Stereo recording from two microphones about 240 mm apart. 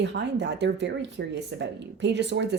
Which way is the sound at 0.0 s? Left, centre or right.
Right.